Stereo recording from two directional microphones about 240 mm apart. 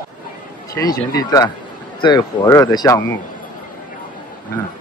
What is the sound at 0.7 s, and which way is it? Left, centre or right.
Speech, centre.